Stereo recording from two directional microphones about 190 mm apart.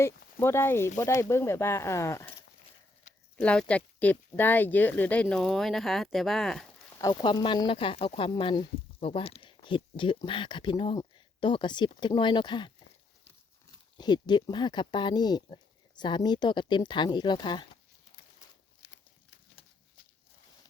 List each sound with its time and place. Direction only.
0.3 s speech: 10° left (ahead or behind)
3.3 s speech: 5° left (ahead or behind)
7.0 s speech: 20° left (ahead or behind)
14.0 s speech: 20° left (ahead or behind)
18.8 s a sound: 65° left (ahead or behind)